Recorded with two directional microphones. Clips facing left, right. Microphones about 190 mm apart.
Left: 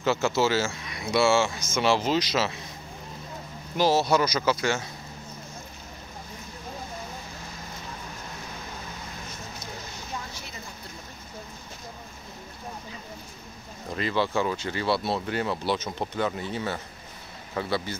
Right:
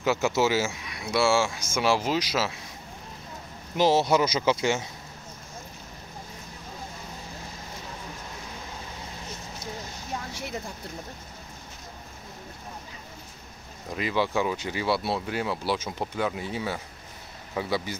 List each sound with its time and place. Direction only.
0.0 s speech: 15° right (ahead or behind)
3.7 s speech: 20° right (ahead or behind)
13.9 s speech: 10° right (ahead or behind)